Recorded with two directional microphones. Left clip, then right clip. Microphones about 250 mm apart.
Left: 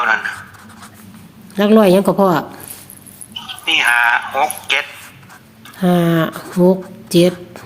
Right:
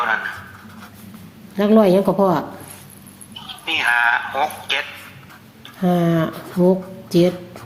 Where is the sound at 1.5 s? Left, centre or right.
Left.